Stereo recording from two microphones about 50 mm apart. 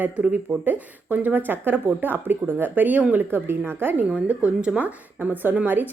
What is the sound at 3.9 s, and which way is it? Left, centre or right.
Speech, right.